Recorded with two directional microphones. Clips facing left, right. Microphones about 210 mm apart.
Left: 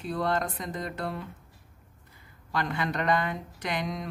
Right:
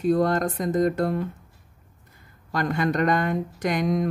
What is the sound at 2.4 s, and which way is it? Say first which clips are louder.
A woman's voice: right 6 dB; 45° right (ahead or behind).